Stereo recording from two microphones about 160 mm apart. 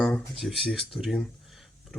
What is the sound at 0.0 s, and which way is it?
Speech, centre (ahead or behind).